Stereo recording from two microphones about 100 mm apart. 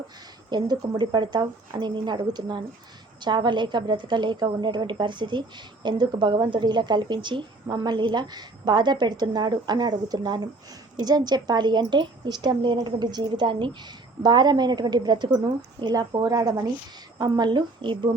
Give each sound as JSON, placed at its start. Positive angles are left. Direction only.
{"t": 0.5, "sound": "a woman's voice", "side_deg": -45}